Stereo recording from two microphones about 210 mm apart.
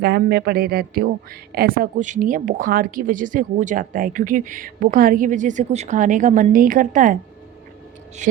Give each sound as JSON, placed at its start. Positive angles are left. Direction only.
{"t": 0.0, "sound": "speech", "side_deg": -50}
{"t": 8.2, "sound": "speech", "side_deg": -35}